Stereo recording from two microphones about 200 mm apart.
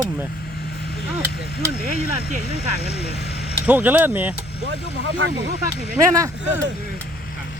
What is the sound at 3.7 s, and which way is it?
Speech, 10° right (ahead or behind).